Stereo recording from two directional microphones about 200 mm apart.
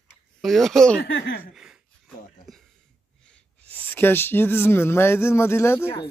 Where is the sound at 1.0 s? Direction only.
55° left (ahead or behind).